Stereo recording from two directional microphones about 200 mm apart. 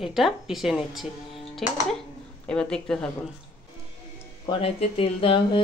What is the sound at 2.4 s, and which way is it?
Speech, 5° left (ahead or behind).